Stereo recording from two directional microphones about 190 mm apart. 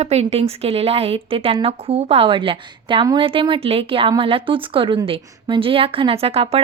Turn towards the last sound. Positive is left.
turn(degrees=-30)  # may be behind; listen again after turning